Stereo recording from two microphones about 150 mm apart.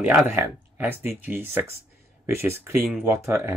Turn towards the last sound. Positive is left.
turn(degrees=-20)  # may be behind; listen again after turning